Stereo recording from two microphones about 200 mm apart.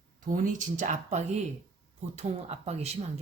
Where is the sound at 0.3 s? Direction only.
40° right (ahead or behind).